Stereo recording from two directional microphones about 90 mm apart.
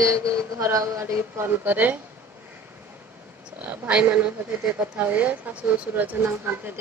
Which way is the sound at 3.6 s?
15° right (ahead or behind).